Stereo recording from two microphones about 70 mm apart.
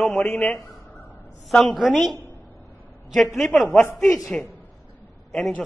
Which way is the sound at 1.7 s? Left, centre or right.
Centre.